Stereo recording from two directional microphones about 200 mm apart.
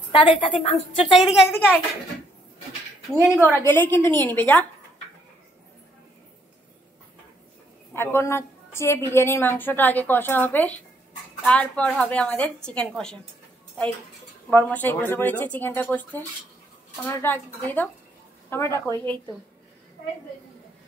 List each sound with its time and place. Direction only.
0.1 s a woman's voice: 25° left (ahead or behind)
1.1 s a woman's voice: centre (ahead or behind)
3.2 s a woman's voice: 10° right (ahead or behind)
3.5 s a woman's voice: 10° left (ahead or behind)
7.9 s a woman's voice: 10° left (ahead or behind)
14.5 s a woman's voice: 10° left (ahead or behind)